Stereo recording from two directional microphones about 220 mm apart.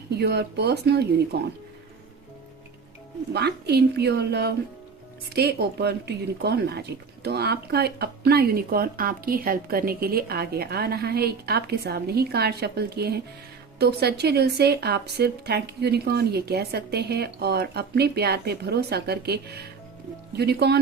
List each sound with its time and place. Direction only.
0.2 s speech: 50° right (ahead or behind)
3.3 s speech: 45° right (ahead or behind)